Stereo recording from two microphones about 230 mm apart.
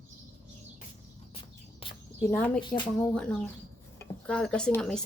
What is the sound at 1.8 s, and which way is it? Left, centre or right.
Speech, centre.